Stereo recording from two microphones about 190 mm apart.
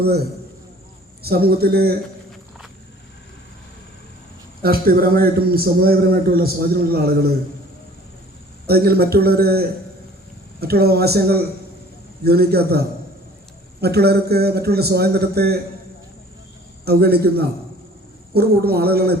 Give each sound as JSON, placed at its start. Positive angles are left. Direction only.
{"t": 1.2, "sound": "a man's voice", "side_deg": -55}
{"t": 4.6, "sound": "a man's voice", "side_deg": -50}
{"t": 8.6, "sound": "a man's voice", "side_deg": -55}
{"t": 13.8, "sound": "a man's voice", "side_deg": -55}
{"t": 16.8, "sound": "a man's voice", "side_deg": -55}